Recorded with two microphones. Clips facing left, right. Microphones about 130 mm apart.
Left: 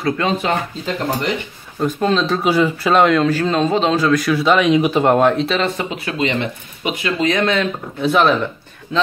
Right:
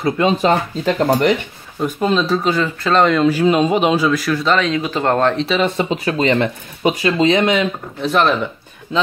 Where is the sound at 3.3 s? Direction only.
10° right (ahead or behind).